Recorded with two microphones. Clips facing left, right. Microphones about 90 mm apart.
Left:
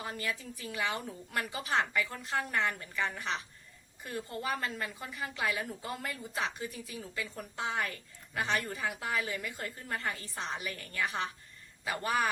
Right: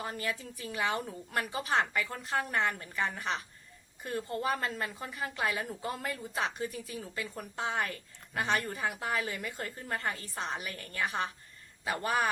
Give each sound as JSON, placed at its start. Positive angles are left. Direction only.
{"t": 0.0, "sound": "a woman's voice", "side_deg": -40}